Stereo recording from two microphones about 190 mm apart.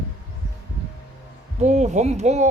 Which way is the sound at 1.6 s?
40° right (ahead or behind).